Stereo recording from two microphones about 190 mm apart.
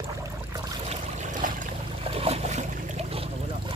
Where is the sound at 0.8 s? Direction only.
40° right (ahead or behind).